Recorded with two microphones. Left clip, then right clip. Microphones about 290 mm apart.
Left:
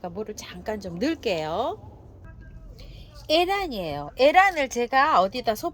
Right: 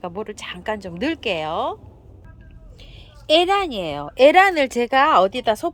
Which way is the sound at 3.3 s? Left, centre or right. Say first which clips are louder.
Right 6 dB; centre.